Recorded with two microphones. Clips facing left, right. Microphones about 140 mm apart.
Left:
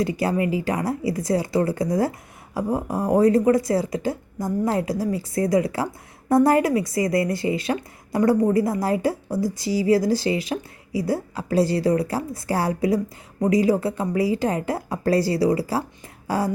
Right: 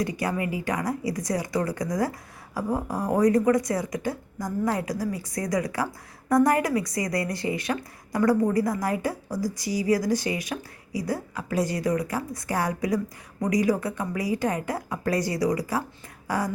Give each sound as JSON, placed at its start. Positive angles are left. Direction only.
{"t": 0.0, "sound": "speech", "side_deg": 25}